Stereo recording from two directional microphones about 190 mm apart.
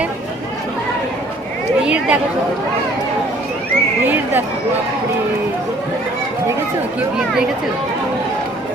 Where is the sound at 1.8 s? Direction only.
5° right (ahead or behind).